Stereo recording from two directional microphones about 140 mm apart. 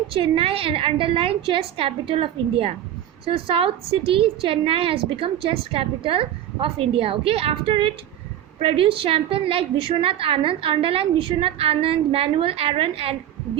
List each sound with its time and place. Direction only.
0.1 s a woman's voice: 40° right (ahead or behind)